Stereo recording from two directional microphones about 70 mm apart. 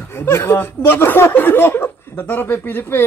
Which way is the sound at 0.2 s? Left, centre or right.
Left.